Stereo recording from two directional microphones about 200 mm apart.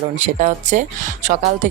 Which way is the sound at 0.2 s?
35° right (ahead or behind).